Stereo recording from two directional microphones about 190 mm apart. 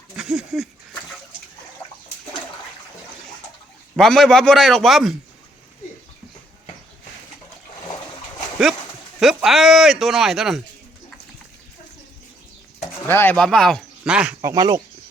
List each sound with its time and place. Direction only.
0.2 s a sound: 5° right (ahead or behind)
1.8 s a sound: 20° left (ahead or behind)
3.9 s speech: centre (ahead or behind)
9.2 s speech: centre (ahead or behind)
13.1 s speech: 10° left (ahead or behind); by 14.5 s 5° right (ahead or behind)
14.5 s speech: 20° right (ahead or behind)